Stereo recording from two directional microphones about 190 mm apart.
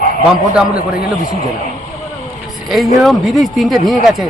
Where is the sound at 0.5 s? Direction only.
5° right (ahead or behind).